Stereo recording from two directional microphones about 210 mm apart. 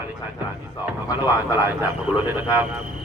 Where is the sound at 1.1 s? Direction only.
20° left (ahead or behind).